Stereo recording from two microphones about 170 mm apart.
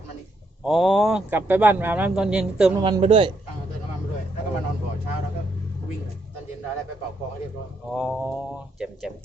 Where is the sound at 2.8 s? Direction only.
25° right (ahead or behind).